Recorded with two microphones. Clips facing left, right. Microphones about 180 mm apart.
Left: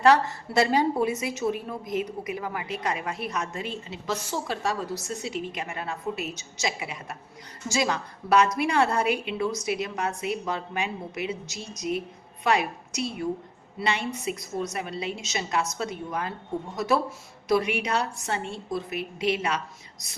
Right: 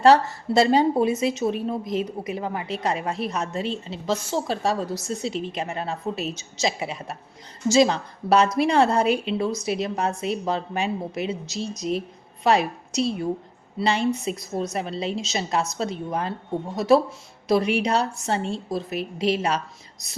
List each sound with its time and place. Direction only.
0.0 s a woman's voice: 30° right (ahead or behind)
17.5 s a woman's voice: 30° right (ahead or behind)